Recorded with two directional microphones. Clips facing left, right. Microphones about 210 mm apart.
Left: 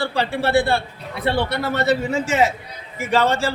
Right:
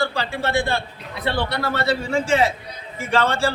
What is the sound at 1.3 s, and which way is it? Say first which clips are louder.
A man's voice: left 2 dB; 20° left (ahead or behind).